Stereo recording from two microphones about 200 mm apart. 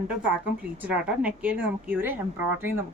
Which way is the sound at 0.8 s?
5° right (ahead or behind).